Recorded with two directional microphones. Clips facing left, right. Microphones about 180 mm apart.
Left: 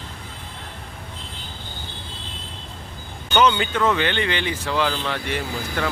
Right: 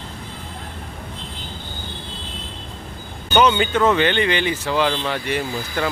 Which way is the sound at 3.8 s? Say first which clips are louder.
Right 5 dB; 30° right (ahead or behind).